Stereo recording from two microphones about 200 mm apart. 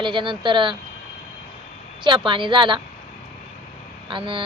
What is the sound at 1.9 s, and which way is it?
Speech, 25° right (ahead or behind).